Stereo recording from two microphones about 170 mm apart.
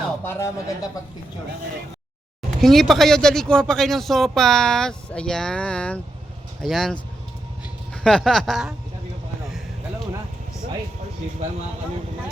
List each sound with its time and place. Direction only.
0.3 s speech: 15° left (ahead or behind)
2.6 s speech: centre (ahead or behind)
8.0 s speech: 5° left (ahead or behind)